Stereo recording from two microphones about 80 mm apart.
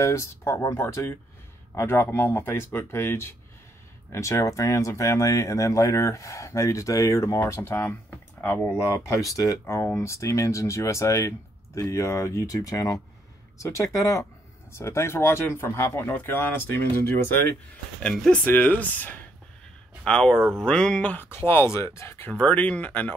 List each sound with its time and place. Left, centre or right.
0.0 s speech: left
18.0 s speech: centre
18.3 s speech: left
20.1 s speech: centre; by 22.3 s left
22.3 s speech: centre